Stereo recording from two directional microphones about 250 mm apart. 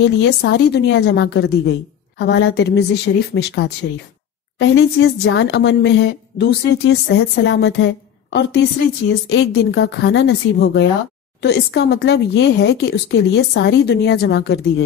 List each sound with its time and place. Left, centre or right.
0.0 s a woman's voice: left